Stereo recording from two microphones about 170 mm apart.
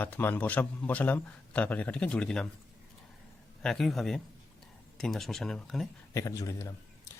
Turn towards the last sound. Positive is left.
turn(degrees=20)  # may be behind; listen again after turning